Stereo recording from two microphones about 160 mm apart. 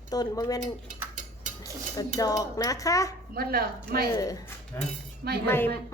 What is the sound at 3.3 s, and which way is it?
Speech, 70° right (ahead or behind).